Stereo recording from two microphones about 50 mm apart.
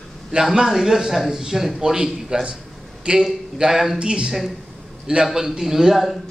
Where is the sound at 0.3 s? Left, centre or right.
Centre.